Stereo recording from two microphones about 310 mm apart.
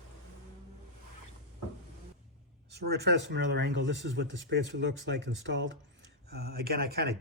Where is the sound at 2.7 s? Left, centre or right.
Right.